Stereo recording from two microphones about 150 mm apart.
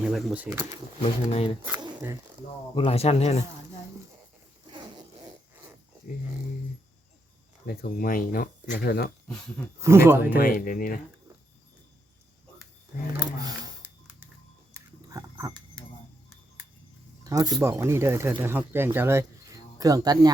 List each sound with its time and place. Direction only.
0.0 s speech: centre (ahead or behind)
1.0 s speech: 45° left (ahead or behind)
2.7 s speech: 40° left (ahead or behind)
7.7 s speech: 80° left
8.8 s speech: 90° left
9.8 s speech: 15° right (ahead or behind)
10.3 s speech: 70° left (ahead or behind)
14.7 s a sound: 20° right (ahead or behind)
17.2 s speech: 25° right (ahead or behind)